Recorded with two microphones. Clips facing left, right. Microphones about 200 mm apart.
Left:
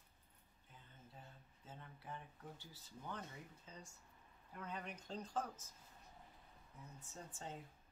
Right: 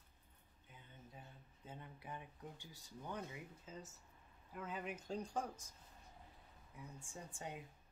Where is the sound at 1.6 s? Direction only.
15° right (ahead or behind).